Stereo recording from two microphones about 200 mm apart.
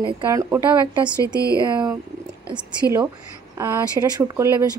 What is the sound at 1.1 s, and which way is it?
Speech, 15° left (ahead or behind).